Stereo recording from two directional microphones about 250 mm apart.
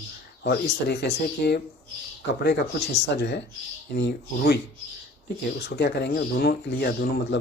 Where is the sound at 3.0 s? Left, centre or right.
Left.